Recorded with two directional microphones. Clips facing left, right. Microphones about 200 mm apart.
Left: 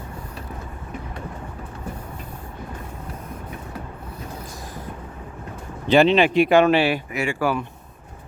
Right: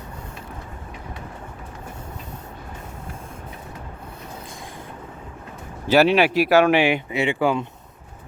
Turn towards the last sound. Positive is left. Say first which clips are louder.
# right 2 dB
turn(degrees=-20)  # may be behind; listen again after turning